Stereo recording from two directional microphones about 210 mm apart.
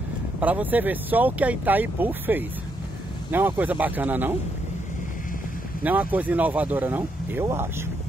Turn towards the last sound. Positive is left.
turn(degrees=-10)  # may be behind; listen again after turning